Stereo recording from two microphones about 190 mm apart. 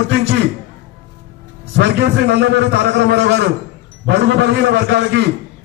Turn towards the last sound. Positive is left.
turn(degrees=-65)  # may be behind; listen again after turning